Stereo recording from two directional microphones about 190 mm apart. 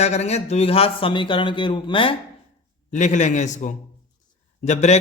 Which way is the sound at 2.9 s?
40° left (ahead or behind).